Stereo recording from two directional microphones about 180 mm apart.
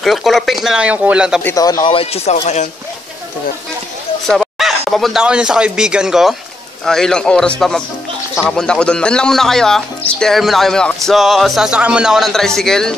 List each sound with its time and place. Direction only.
0.0 s speech: centre (ahead or behind)
1.4 s speech: 20° left (ahead or behind); by 2.7 s 40° left (ahead or behind)
4.3 s speech: centre (ahead or behind)